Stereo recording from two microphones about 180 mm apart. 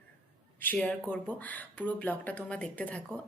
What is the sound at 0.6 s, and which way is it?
Speech, 5° left (ahead or behind).